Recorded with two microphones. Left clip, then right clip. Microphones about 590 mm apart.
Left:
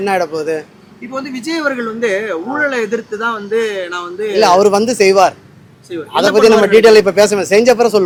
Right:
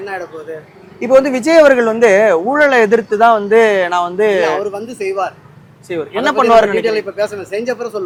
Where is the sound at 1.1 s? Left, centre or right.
Centre.